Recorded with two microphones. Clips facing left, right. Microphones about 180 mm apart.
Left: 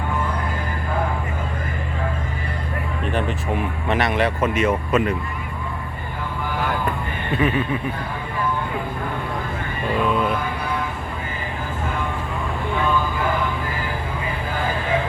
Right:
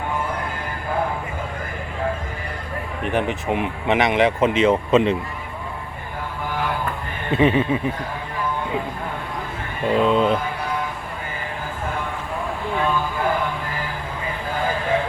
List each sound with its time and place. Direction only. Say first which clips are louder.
3.0 s speech: right 3 dB; 15° right (ahead or behind)
7.3 s speech: right 4 dB; 25° right (ahead or behind)
9.9 s speech: right 4 dB; 25° right (ahead or behind)